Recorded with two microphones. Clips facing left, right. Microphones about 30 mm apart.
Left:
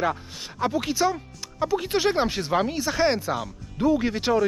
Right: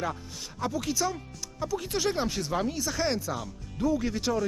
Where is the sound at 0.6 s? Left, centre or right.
Left.